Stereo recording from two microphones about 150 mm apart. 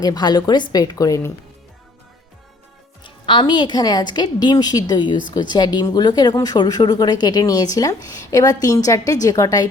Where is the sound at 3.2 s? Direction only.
30° left (ahead or behind).